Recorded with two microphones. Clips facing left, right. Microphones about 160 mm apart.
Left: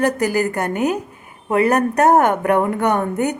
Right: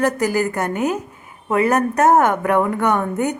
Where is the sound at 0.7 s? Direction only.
15° left (ahead or behind).